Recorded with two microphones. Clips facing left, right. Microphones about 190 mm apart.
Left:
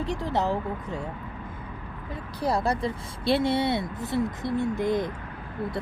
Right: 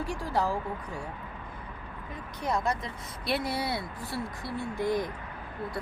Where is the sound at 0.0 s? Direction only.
20° left (ahead or behind).